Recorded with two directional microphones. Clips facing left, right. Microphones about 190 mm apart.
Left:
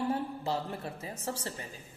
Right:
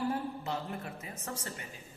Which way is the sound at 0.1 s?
30° left (ahead or behind).